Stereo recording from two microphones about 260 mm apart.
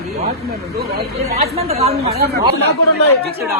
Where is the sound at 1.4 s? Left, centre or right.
Right.